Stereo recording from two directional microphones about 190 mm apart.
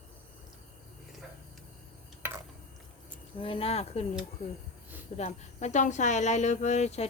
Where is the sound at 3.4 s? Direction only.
30° left (ahead or behind).